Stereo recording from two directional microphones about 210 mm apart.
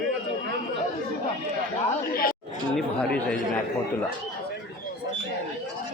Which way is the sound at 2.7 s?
5° left (ahead or behind).